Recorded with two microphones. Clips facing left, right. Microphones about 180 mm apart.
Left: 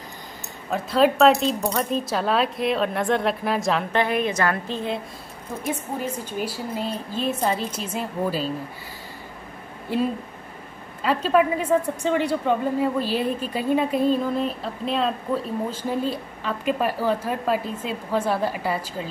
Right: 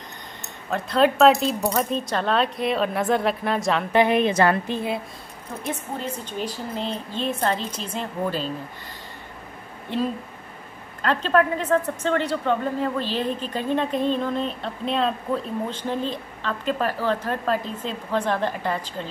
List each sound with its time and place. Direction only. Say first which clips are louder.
0.7 s speech: left 1 dB; centre (ahead or behind)
3.9 s a woman's voice: right 7 dB; 15° right (ahead or behind)
4.2 s a woman's voice: right 4 dB; 25° right (ahead or behind)
4.6 s a woman's voice: right 1 dB; 10° right (ahead or behind)
5.7 s a woman's voice: left 2 dB; 10° left (ahead or behind)
11.0 s a woman's voice: left 1 dB; 5° left (ahead or behind)